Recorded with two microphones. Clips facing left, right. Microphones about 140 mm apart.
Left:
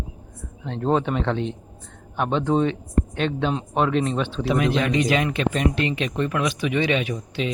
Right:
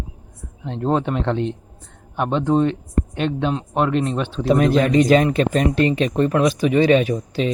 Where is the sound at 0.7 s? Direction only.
5° right (ahead or behind).